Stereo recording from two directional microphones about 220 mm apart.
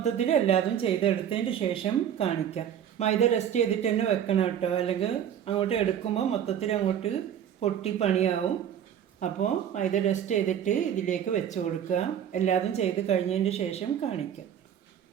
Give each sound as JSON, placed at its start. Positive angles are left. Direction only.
{"t": 0.0, "sound": "speech", "side_deg": 30}